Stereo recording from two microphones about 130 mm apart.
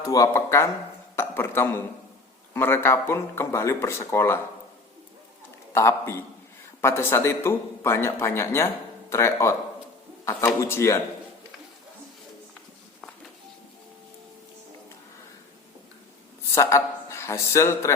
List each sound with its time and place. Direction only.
0.1 s a man's voice: 25° left (ahead or behind)
5.7 s a man's voice: 20° left (ahead or behind)
16.6 s a man's voice: 25° left (ahead or behind)